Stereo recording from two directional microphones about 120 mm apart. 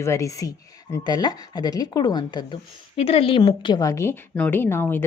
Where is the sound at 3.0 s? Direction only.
55° left (ahead or behind).